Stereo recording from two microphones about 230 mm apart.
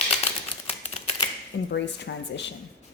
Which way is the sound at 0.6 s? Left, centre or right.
Left.